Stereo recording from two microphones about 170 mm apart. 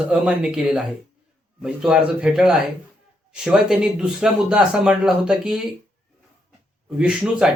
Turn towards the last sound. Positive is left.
turn(degrees=-5)  # may be behind; listen again after turning